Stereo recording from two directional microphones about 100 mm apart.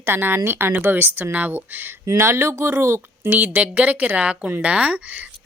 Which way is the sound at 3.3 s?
15° right (ahead or behind).